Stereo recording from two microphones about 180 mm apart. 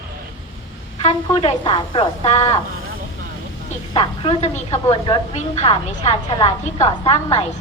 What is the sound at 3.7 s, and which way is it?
A woman's voice, 30° left (ahead or behind).